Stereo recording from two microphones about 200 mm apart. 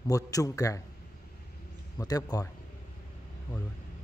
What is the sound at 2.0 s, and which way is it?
Speech, 20° left (ahead or behind).